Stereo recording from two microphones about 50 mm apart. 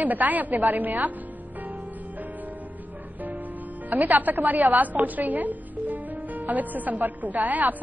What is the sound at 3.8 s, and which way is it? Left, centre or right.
A woman's voice, right.